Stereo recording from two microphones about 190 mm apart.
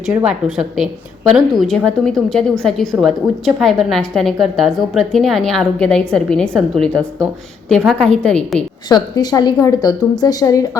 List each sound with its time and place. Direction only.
0.3 s a woman's voice: centre (ahead or behind)
9.1 s a woman's voice: 20° left (ahead or behind)